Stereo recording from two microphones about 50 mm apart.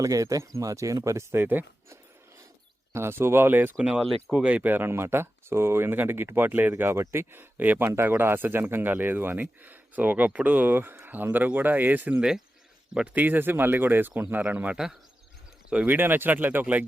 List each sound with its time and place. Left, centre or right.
0.2 s speech: right
1.4 s speech: right
2.9 s speech: right
3.8 s speech: centre
4.4 s speech: right
4.9 s speech: right
7.0 s speech: right
7.6 s speech: right
7.9 s speech: right
8.1 s speech: right
16.0 s speech: right